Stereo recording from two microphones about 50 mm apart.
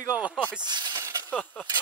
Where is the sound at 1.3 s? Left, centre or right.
Left.